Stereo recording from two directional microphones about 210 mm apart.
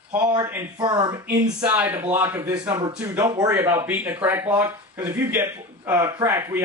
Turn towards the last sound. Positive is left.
turn(degrees=-10)  # may be behind; listen again after turning